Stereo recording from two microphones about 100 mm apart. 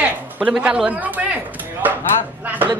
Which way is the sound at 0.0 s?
10° right (ahead or behind).